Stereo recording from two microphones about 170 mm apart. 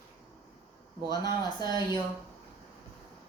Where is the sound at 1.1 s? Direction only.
25° left (ahead or behind).